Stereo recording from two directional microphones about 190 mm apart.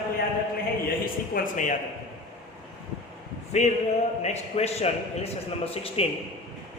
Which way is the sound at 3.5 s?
35° left (ahead or behind).